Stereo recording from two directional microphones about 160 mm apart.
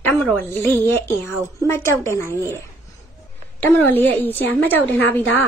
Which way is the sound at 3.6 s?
10° left (ahead or behind).